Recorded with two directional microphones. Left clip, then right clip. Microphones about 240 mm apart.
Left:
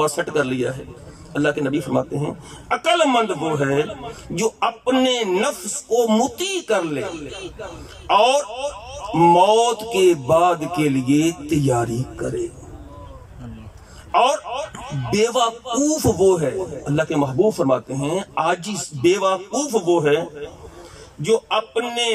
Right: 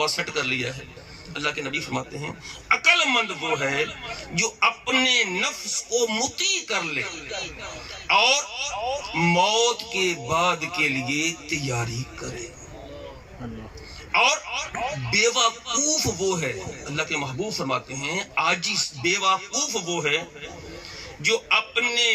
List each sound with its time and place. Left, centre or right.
0.0 s a man's voice: left
14.1 s a man's voice: left